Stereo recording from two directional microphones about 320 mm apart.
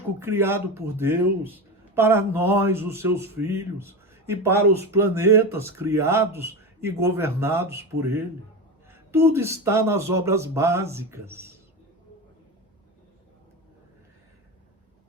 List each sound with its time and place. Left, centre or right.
0.2 s speech: centre